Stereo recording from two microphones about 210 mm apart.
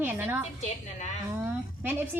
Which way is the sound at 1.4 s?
10° right (ahead or behind).